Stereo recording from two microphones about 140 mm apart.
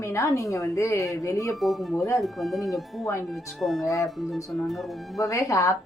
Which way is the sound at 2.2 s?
Centre (ahead or behind).